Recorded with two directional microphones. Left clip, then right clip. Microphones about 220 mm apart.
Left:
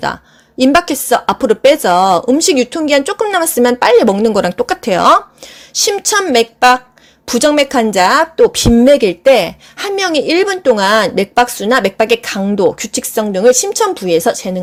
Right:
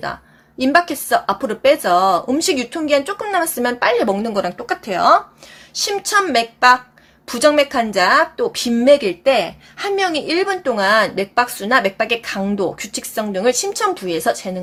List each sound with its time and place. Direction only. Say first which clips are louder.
0.6 s a woman's voice: left 4 dB; 35° left (ahead or behind)